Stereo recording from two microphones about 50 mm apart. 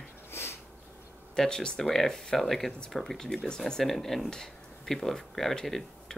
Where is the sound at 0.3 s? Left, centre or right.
Left.